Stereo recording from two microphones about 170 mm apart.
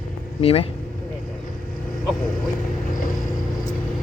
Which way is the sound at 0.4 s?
35° left (ahead or behind).